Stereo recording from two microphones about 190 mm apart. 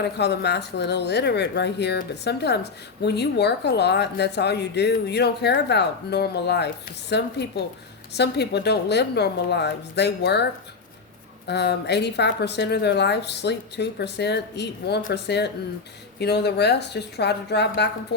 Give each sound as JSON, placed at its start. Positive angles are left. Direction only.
{"t": 0.0, "sound": "speech", "side_deg": 60}